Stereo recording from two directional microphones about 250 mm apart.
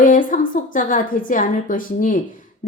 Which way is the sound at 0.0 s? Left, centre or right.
Left.